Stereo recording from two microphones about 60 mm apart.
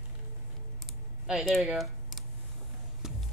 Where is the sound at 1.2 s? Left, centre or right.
Centre.